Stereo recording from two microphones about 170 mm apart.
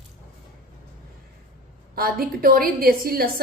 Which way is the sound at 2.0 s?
60° right (ahead or behind).